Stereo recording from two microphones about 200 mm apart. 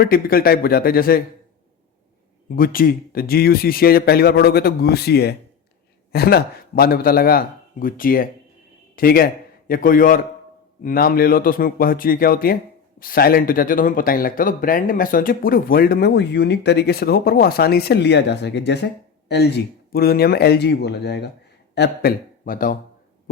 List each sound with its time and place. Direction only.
0.0 s speech: 45° left (ahead or behind)
2.6 s a man's voice: 45° left (ahead or behind)